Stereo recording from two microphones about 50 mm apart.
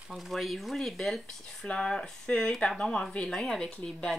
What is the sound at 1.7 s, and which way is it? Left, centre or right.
Speech, centre.